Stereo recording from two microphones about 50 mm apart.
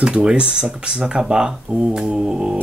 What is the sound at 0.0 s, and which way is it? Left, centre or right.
Speech, centre.